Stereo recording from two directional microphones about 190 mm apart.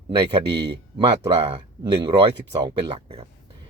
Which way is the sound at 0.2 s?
25° right (ahead or behind).